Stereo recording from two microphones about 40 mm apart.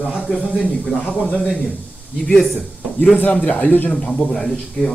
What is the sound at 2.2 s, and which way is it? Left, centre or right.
Speech, centre.